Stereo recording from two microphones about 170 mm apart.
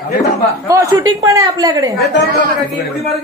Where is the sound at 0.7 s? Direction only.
15° right (ahead or behind).